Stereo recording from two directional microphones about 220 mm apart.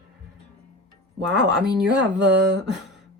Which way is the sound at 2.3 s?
50° right (ahead or behind).